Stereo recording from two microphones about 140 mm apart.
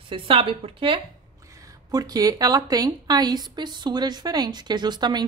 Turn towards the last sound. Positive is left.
turn(degrees=-30)  # may be behind; listen again after turning